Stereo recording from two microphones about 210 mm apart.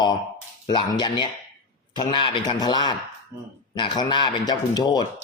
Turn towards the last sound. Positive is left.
turn(degrees=20)  # may be behind; listen again after turning